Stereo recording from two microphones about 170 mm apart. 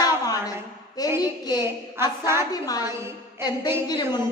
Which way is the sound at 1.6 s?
15° right (ahead or behind).